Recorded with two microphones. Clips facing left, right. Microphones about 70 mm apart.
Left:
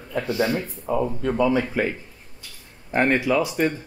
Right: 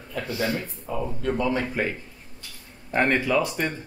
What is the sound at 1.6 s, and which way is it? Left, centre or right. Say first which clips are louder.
Speech: left 3 dB; centre.